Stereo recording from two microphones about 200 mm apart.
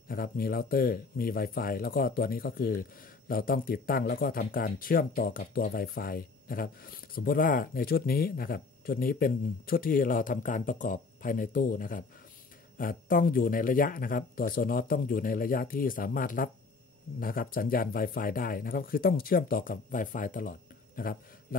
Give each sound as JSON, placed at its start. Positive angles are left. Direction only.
{"t": 0.1, "sound": "speech", "side_deg": 50}